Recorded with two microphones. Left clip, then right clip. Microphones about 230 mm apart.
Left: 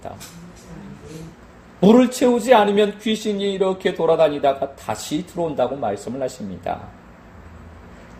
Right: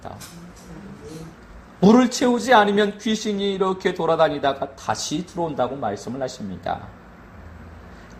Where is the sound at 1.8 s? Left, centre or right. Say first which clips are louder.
Left 2 dB; right.